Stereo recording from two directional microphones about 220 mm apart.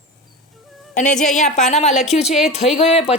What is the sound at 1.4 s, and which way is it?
A woman's voice, 30° left (ahead or behind).